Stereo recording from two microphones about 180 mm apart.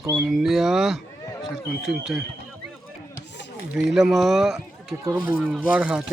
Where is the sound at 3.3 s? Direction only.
75° left (ahead or behind).